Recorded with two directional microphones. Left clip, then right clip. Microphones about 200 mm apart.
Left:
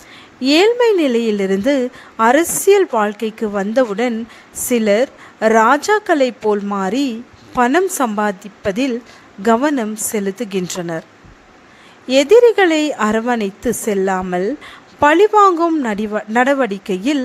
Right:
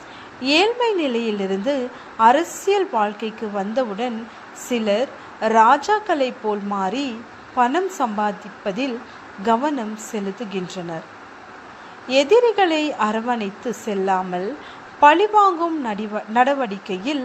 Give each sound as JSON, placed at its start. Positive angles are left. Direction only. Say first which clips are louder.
{"t": 0.4, "sound": "a woman's voice", "louder": "left 6 dB", "side_deg": 45}
{"t": 12.0, "sound": "a woman's voice", "louder": "left 6 dB", "side_deg": 50}